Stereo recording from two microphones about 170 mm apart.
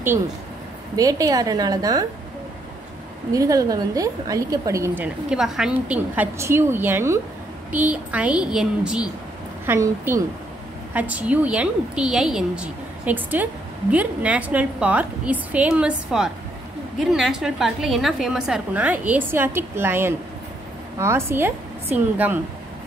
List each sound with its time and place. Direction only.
0.9 s a woman's voice: 20° right (ahead or behind)
3.3 s a woman's voice: 20° right (ahead or behind); by 9.0 s 5° right (ahead or behind)
9.7 s a woman's voice: 15° right (ahead or behind)